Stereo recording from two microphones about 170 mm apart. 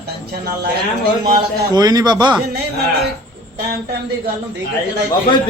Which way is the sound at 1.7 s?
20° right (ahead or behind).